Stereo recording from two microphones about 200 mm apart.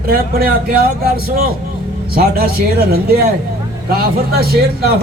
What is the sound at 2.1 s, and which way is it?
Speech, 50° right (ahead or behind).